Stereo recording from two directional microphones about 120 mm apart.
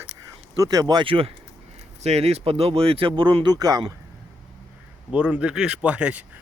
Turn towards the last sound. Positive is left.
turn(degrees=-10)  # may be behind; listen again after turning